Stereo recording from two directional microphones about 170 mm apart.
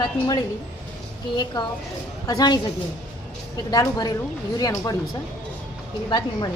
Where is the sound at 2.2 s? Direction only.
25° left (ahead or behind).